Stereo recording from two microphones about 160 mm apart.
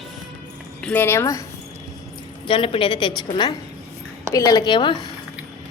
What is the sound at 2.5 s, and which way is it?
Speech, 30° left (ahead or behind).